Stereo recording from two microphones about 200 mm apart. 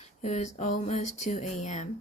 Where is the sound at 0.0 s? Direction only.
35° left (ahead or behind).